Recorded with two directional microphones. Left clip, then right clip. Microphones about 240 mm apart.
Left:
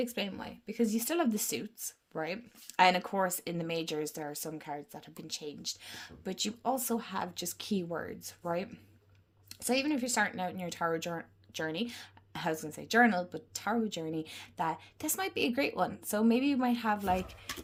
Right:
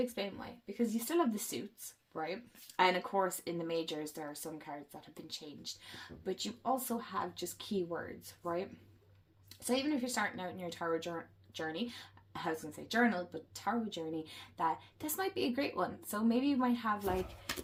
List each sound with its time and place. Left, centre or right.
0.0 s speech: left